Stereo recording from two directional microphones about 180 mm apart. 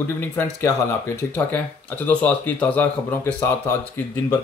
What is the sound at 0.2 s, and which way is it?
Speech, 10° left (ahead or behind).